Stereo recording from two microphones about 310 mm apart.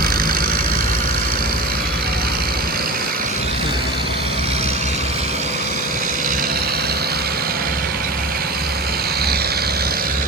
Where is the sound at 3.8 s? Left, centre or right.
Left.